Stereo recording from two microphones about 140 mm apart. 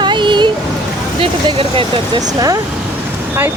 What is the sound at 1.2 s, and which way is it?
Speech, 40° right (ahead or behind).